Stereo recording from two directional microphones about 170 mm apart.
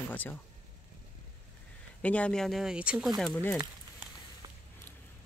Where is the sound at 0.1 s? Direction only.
10° left (ahead or behind).